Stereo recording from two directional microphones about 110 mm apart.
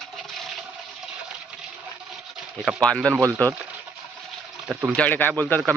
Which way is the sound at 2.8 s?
10° left (ahead or behind).